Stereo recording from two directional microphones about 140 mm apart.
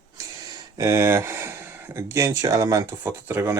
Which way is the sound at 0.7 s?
20° right (ahead or behind).